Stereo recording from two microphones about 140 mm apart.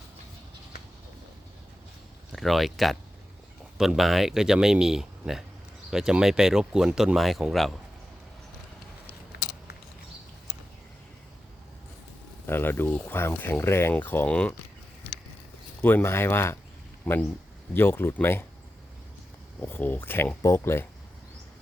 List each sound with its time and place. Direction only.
2.3 s speech: centre (ahead or behind)
12.5 s speech: 15° left (ahead or behind)
15.8 s speech: 15° left (ahead or behind)
19.5 s speech: 15° left (ahead or behind)